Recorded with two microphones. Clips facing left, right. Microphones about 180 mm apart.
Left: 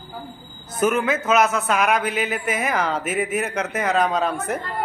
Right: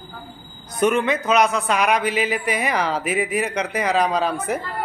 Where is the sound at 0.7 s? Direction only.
5° left (ahead or behind).